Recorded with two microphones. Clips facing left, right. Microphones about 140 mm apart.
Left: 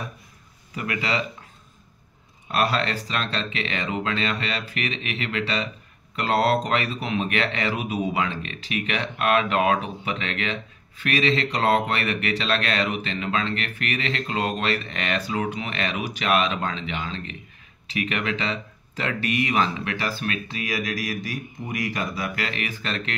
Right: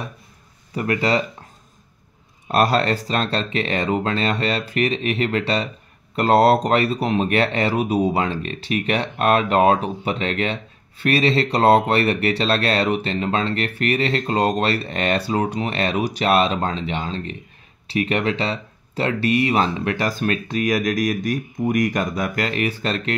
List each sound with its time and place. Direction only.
0.7 s speech: 40° right (ahead or behind)
2.4 s speech: 40° right (ahead or behind)